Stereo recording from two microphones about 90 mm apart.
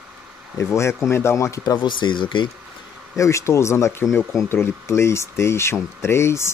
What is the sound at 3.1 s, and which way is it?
Speech, 35° left (ahead or behind).